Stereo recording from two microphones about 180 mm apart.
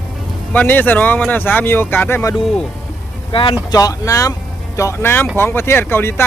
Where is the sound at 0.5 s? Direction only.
10° left (ahead or behind).